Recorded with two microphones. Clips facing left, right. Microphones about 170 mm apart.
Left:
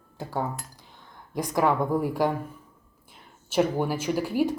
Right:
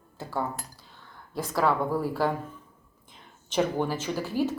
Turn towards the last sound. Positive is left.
turn(degrees=15)  # may be behind; listen again after turning